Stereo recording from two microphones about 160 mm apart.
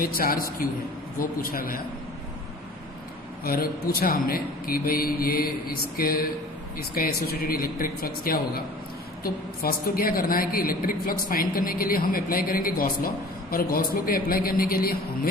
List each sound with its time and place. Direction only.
0.0 s a woman's voice: 65° left (ahead or behind)
3.4 s a woman's voice: 70° left (ahead or behind)